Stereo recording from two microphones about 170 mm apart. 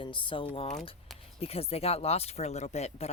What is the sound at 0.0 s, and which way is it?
Speech, 30° left (ahead or behind).